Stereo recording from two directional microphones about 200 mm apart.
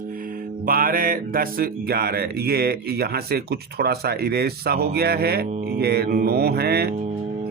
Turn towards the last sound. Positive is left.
turn(degrees=-50)  # may be behind; listen again after turning